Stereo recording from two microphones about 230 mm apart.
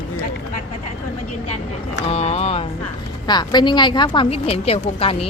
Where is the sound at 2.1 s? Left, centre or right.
Left.